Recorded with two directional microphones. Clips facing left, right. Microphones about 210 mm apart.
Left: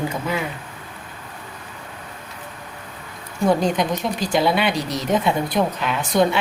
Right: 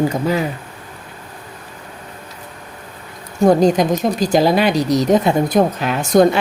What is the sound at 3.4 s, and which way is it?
Speech, 40° right (ahead or behind).